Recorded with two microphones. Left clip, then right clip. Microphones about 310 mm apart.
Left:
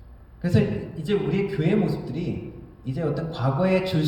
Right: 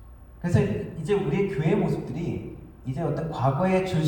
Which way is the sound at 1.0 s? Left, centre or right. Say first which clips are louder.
Even; left.